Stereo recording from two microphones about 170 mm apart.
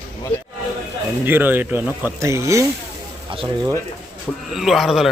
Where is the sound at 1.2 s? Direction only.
10° right (ahead or behind).